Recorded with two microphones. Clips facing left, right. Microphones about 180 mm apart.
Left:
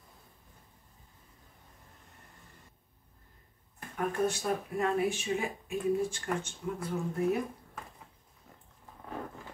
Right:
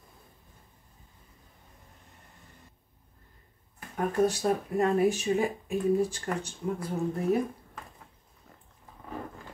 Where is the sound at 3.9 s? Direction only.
35° right (ahead or behind).